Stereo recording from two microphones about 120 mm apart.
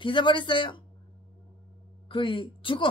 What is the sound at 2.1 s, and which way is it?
Speech, 45° left (ahead or behind).